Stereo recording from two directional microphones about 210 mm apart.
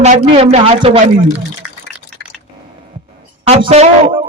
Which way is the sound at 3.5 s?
30° right (ahead or behind).